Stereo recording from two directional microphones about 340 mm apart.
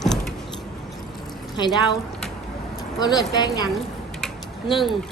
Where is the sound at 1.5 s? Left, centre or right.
Centre.